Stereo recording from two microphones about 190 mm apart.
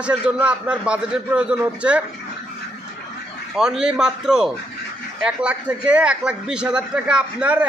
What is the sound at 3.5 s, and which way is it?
A man's voice, 5° right (ahead or behind).